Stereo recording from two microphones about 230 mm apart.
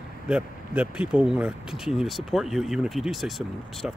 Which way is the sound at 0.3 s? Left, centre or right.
Centre.